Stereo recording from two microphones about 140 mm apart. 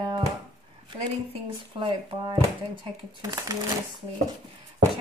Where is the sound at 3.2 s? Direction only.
25° right (ahead or behind).